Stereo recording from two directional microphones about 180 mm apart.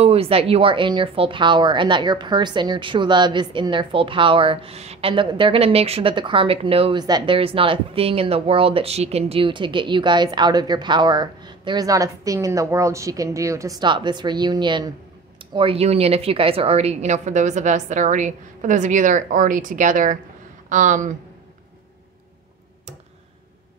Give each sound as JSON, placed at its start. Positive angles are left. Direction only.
{"t": 0.0, "sound": "a woman's voice", "side_deg": -35}